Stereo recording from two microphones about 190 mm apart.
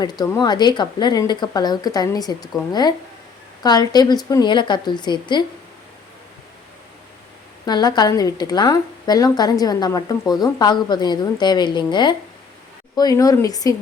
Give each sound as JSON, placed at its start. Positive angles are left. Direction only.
{"t": 0.0, "sound": "a woman's voice", "side_deg": 20}
{"t": 7.6, "sound": "a woman's voice", "side_deg": 20}